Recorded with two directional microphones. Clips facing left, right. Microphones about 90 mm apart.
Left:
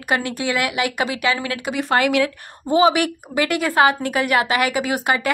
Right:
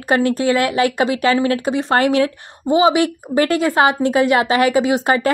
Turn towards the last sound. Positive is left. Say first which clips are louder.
# right 5 dB
turn(degrees=-30)  # may be behind; listen again after turning